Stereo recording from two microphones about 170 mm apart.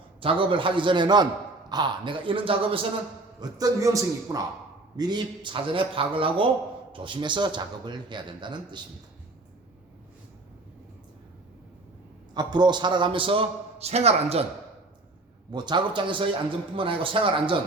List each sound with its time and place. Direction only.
0.2 s a man's voice: 30° right (ahead or behind)
3.4 s a man's voice: 20° right (ahead or behind)
12.3 s a man's voice: 25° right (ahead or behind)
15.5 s a man's voice: 25° right (ahead or behind)